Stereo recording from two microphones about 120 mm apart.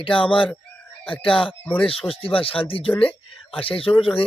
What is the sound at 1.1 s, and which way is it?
Speech, 45° left (ahead or behind).